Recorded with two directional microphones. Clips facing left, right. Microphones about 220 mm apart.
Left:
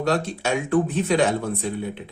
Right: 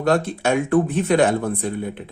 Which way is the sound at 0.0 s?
55° right (ahead or behind).